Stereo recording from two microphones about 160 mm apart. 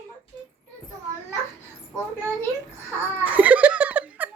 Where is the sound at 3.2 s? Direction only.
10° right (ahead or behind).